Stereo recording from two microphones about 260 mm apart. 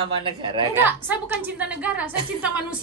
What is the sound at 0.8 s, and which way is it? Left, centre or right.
A woman's voice, centre.